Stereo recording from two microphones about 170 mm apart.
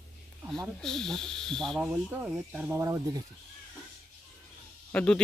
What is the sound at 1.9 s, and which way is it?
Speech, 10° right (ahead or behind).